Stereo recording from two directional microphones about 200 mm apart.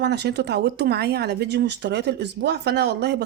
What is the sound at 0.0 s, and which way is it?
Speech, 55° right (ahead or behind).